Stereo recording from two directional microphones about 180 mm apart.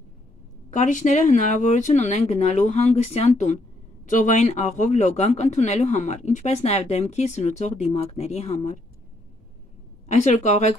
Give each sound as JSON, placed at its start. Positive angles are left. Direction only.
{"t": 0.7, "sound": "speech", "side_deg": 45}
{"t": 10.0, "sound": "speech", "side_deg": 40}